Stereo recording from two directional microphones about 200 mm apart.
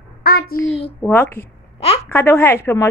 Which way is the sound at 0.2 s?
50° left (ahead or behind).